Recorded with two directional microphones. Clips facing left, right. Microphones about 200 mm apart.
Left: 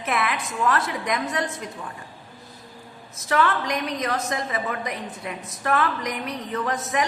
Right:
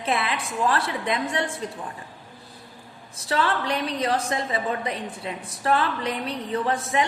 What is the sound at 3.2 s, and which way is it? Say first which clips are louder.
A woman's voice: left 2 dB; 30° right (ahead or behind).